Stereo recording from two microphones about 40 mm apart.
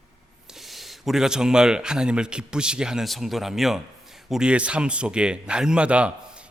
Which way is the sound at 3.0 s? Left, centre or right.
Centre.